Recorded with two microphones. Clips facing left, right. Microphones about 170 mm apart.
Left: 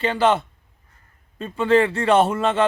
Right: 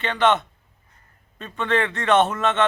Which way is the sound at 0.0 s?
30° left (ahead or behind).